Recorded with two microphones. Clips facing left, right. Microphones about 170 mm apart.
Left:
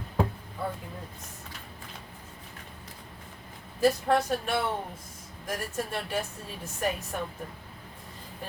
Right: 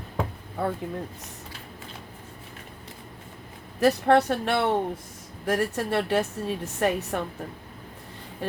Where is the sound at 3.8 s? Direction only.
75° right (ahead or behind).